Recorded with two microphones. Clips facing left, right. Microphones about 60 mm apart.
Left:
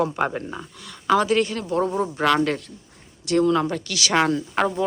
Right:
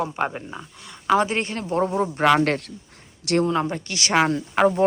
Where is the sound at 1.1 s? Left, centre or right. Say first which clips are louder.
Left 2 dB; right.